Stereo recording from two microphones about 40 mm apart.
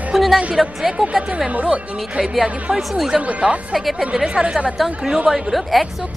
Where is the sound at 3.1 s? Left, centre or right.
Right.